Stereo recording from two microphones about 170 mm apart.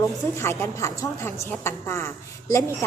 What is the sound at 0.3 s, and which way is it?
A woman's voice, 15° left (ahead or behind).